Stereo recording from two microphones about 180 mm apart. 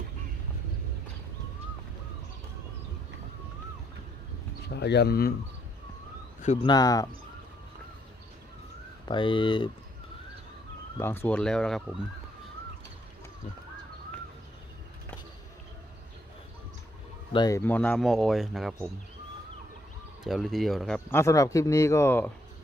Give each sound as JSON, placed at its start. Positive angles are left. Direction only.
{"t": 4.7, "sound": "speech", "side_deg": 70}
{"t": 6.6, "sound": "speech", "side_deg": 20}
{"t": 9.0, "sound": "speech", "side_deg": 25}
{"t": 11.0, "sound": "speech", "side_deg": 10}
{"t": 17.3, "sound": "speech", "side_deg": 20}
{"t": 20.2, "sound": "speech", "side_deg": 0}
{"t": 21.2, "sound": "speech", "side_deg": 15}